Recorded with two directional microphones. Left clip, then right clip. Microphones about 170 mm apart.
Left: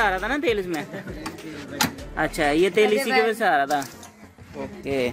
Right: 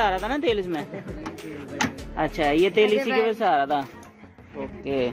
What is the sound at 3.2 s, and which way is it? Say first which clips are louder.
Speech: left 1 dB; 5° left (ahead or behind).